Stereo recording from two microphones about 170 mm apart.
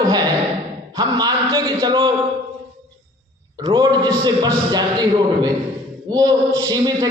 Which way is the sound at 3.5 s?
25° right (ahead or behind).